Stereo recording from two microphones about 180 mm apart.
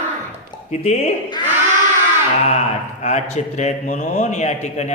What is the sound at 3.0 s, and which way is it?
A man's voice, 40° left (ahead or behind).